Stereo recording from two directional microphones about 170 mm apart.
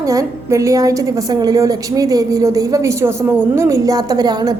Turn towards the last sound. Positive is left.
turn(degrees=-20)  # may be behind; listen again after turning